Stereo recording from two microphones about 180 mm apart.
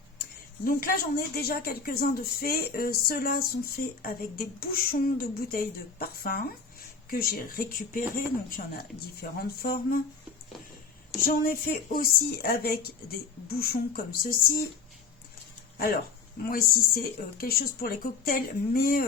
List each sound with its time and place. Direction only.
0.6 s speech: 50° left (ahead or behind)
11.2 s speech: 55° left (ahead or behind)
16.5 s speech: 55° left (ahead or behind)